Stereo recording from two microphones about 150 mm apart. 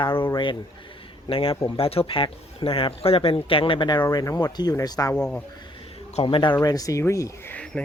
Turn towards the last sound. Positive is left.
turn(degrees=5)  # may be behind; listen again after turning